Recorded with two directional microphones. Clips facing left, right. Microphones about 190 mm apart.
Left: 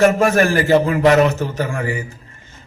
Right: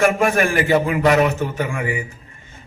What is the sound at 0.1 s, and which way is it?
Speech, 40° left (ahead or behind).